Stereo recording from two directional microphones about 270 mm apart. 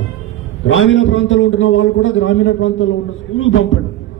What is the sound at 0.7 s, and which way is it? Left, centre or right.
A man's voice, left.